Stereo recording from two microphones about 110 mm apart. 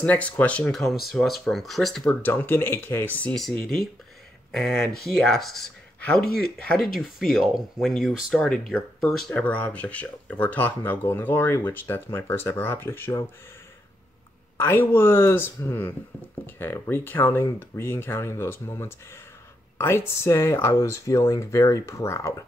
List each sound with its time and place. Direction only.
0.0 s speech: 15° left (ahead or behind)
2.2 s speech: 20° left (ahead or behind)
3.3 s speech: 5° left (ahead or behind); by 13.2 s 20° left (ahead or behind)
14.6 s speech: 20° left (ahead or behind)